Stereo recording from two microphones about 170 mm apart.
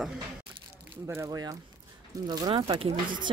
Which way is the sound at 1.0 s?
20° right (ahead or behind).